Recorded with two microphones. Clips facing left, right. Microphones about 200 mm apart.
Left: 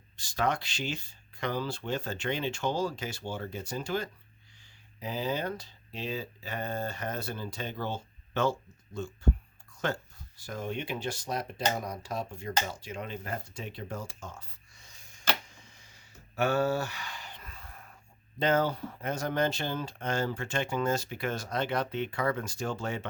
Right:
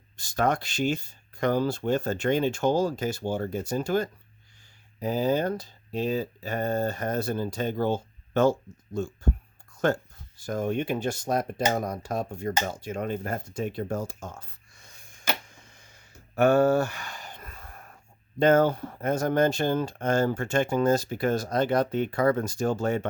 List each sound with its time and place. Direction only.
0.2 s speech: 50° right (ahead or behind)
15.5 s a sound: 50° right (ahead or behind)
18.3 s speech: 50° right (ahead or behind)